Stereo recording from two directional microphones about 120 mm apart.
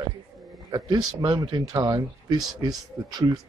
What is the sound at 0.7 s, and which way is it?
Speech, 35° right (ahead or behind).